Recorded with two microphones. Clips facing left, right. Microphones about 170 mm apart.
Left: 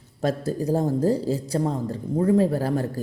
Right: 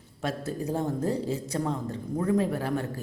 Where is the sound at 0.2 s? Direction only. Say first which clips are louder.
Left 6 dB; 35° left (ahead or behind).